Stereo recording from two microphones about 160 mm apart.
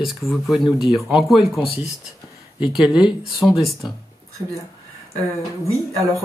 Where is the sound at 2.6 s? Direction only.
Centre (ahead or behind).